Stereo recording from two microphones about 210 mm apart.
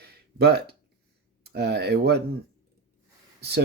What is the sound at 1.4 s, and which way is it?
Speech, 50° right (ahead or behind).